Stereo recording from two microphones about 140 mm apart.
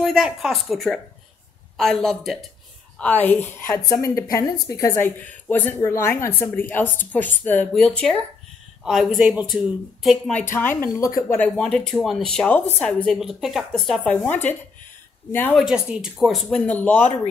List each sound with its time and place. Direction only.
0.0 s a woman's voice: centre (ahead or behind)
10.3 s a woman's voice: 15° left (ahead or behind)
11.3 s a woman's voice: 5° left (ahead or behind)
15.6 s speech: 5° right (ahead or behind)